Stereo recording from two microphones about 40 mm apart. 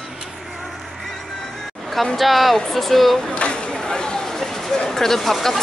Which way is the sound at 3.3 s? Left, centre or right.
Left.